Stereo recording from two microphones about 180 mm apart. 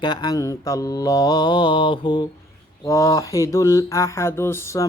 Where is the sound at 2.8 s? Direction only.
20° left (ahead or behind).